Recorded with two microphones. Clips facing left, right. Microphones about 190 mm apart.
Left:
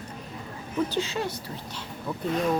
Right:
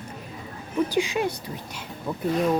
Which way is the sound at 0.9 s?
15° right (ahead or behind).